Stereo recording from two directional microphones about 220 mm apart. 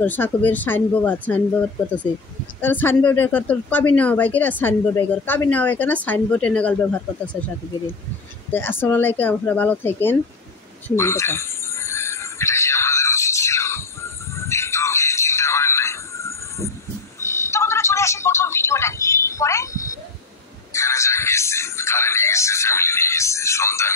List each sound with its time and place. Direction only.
0.0 s a woman's voice: 10° left (ahead or behind)
2.6 s a woman's voice: 10° left (ahead or behind)
8.5 s a woman's voice: 10° left (ahead or behind)
11.0 s a sound: 10° left (ahead or behind)
20.7 s music: 15° left (ahead or behind)